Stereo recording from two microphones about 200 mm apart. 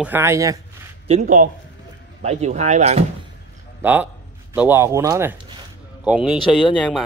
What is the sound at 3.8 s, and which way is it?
A man's voice, 10° right (ahead or behind).